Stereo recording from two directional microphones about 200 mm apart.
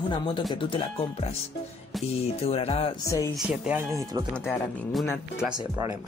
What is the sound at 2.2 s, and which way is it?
Speech, 30° left (ahead or behind).